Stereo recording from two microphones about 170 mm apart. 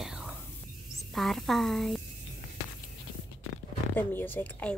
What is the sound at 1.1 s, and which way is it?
Speech, centre (ahead or behind).